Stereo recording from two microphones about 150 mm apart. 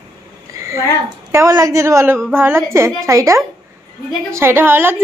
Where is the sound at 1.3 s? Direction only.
20° right (ahead or behind).